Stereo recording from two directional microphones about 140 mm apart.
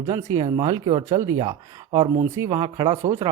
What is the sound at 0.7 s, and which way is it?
Speech, 40° right (ahead or behind).